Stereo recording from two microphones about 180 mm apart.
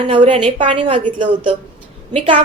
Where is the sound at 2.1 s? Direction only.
35° right (ahead or behind).